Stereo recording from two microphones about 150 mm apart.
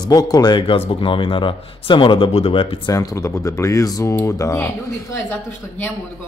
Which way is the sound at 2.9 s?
25° left (ahead or behind).